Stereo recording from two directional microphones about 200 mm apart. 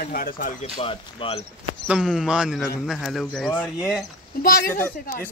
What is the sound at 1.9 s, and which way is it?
Speech, 5° right (ahead or behind).